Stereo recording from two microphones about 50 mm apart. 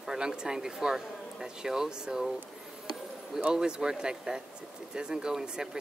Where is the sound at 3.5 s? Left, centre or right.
Centre.